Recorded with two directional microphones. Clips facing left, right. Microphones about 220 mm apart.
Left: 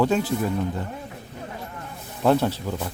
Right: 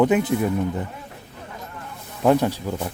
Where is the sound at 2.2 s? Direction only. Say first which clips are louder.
Right 2 dB; 10° right (ahead or behind).